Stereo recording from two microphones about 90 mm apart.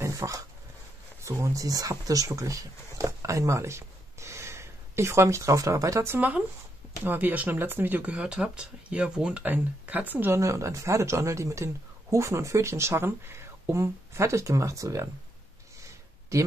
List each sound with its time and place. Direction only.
0.0 s a sound: 35° right (ahead or behind)
1.2 s speech: 35° right (ahead or behind)
6.1 s speech: 15° right (ahead or behind)
8.0 s speech: 10° right (ahead or behind)
10.3 s speech: 35° right (ahead or behind)
15.8 s a sound: 35° right (ahead or behind)